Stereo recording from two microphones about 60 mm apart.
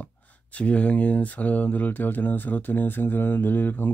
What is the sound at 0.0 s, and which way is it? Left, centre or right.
Speech, left.